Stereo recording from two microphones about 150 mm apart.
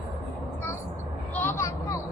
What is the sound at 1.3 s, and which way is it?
Vehicle, 15° left (ahead or behind).